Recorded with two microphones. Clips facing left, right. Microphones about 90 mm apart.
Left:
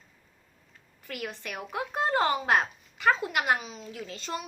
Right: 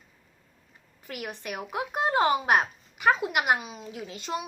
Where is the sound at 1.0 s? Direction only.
15° right (ahead or behind).